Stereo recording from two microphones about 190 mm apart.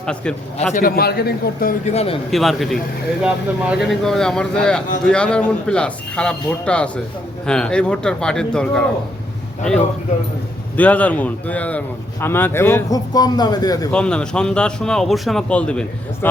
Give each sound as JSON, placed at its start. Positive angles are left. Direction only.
{"t": 0.0, "sound": "speech", "side_deg": 5}
{"t": 0.7, "sound": "a man's voice", "side_deg": 50}
{"t": 1.8, "sound": "speech", "side_deg": 35}
{"t": 2.3, "sound": "speech", "side_deg": 0}
{"t": 10.8, "sound": "a man's voice", "side_deg": 5}
{"t": 13.9, "sound": "speech", "side_deg": 5}